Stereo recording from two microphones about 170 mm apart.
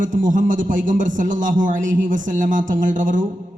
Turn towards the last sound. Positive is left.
turn(degrees=-50)  # may be behind; listen again after turning